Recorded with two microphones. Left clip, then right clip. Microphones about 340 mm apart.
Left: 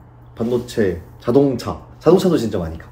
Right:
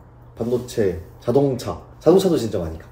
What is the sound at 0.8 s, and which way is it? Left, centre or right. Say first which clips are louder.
A man's voice: left 2 dB; left.